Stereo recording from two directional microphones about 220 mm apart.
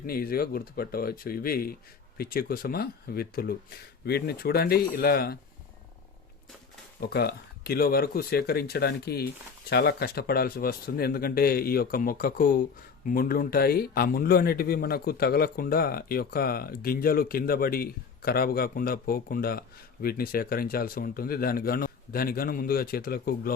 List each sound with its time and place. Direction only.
0.0 s speech: 40° left (ahead or behind)
7.0 s speech: 45° left (ahead or behind)